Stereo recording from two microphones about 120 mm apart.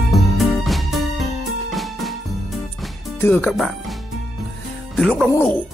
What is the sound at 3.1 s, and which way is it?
Music, 15° left (ahead or behind).